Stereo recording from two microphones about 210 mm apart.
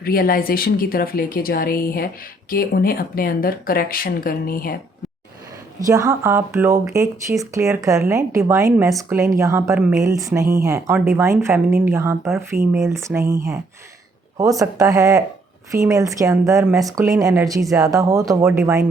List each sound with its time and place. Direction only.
0.0 s speech: 45° left (ahead or behind)
5.8 s speech: 15° right (ahead or behind)